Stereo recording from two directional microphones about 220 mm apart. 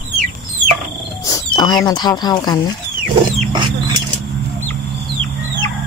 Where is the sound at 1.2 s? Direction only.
15° left (ahead or behind).